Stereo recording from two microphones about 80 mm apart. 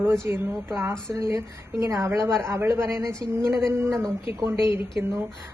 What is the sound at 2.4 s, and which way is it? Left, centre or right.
A woman's voice, right.